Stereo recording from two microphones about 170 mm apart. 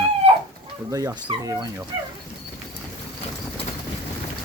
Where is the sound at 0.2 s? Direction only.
35° right (ahead or behind).